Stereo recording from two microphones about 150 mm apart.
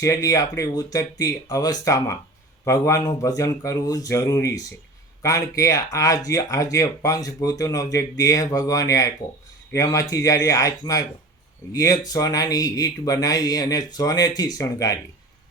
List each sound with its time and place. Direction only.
0.0 s speech: 20° left (ahead or behind)